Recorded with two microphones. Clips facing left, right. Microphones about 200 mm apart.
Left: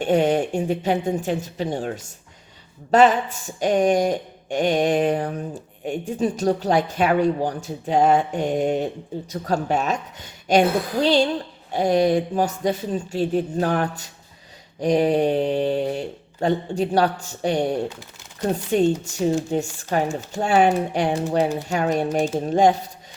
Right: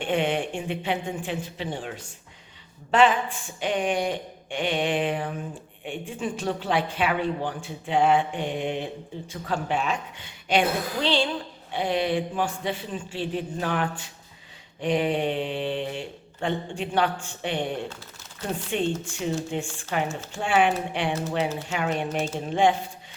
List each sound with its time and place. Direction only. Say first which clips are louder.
0.0 s speech: left 6 dB; 40° left (ahead or behind)